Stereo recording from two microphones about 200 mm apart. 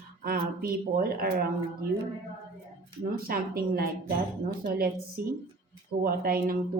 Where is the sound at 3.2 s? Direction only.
50° right (ahead or behind).